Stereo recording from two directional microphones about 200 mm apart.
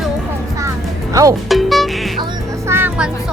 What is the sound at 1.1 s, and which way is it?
Speech, 15° right (ahead or behind).